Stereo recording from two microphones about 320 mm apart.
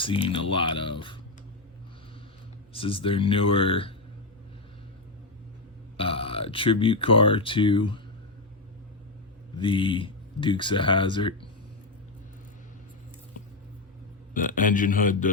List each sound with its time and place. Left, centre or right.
0.0 s speech: centre
2.7 s speech: centre
6.0 s speech: centre
9.6 s speech: centre
14.3 s a man's voice: left